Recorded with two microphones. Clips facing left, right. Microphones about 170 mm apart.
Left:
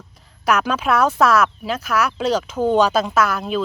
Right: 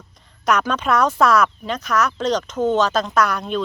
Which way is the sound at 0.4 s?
5° left (ahead or behind).